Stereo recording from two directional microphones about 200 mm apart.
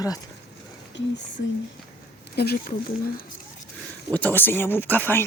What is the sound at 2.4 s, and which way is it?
Speech, 50° left (ahead or behind).